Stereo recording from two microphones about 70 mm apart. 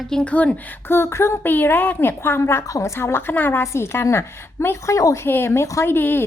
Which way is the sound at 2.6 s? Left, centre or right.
Left.